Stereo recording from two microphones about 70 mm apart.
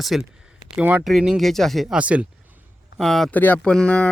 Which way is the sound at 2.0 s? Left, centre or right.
Centre.